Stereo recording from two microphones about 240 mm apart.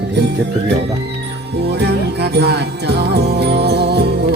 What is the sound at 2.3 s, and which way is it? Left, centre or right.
Music, right.